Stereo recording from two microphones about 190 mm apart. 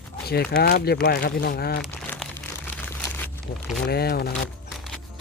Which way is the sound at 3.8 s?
55° left (ahead or behind).